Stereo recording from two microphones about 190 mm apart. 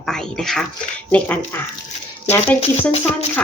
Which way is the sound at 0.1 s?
5° left (ahead or behind).